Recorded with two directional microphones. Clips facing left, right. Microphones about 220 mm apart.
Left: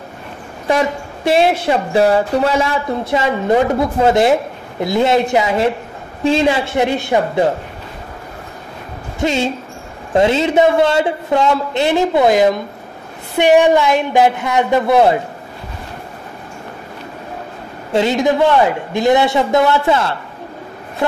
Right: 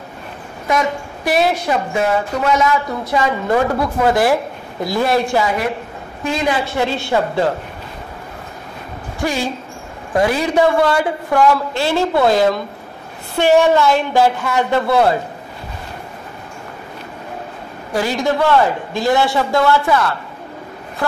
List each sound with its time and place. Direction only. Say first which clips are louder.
0.7 s a woman's voice: left 2 dB; 30° left (ahead or behind)
9.2 s a woman's voice: left 3 dB; 25° left (ahead or behind)
17.9 s a woman's voice: left 4 dB; 20° left (ahead or behind)